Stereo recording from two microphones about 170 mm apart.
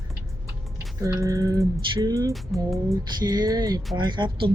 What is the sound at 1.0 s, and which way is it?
A woman's voice, 20° right (ahead or behind).